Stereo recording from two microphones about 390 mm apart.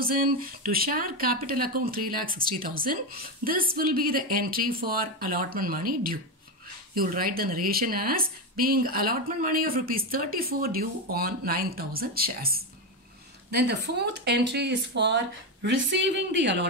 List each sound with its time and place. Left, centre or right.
0.0 s speech: right